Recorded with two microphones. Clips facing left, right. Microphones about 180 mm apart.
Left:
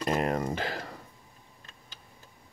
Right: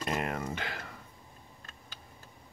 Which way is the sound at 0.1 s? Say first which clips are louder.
Left 6 dB; 40° left (ahead or behind).